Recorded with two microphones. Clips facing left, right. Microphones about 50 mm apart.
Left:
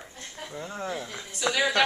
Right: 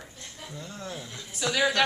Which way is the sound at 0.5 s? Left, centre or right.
Left.